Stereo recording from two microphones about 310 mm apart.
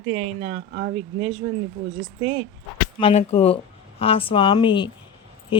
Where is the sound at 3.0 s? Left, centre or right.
Centre.